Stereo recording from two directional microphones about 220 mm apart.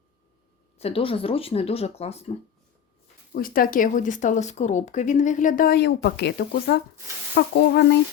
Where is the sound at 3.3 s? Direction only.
40° left (ahead or behind).